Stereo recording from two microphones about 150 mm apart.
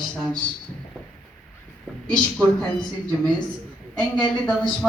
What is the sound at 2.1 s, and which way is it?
Speech, 5° left (ahead or behind).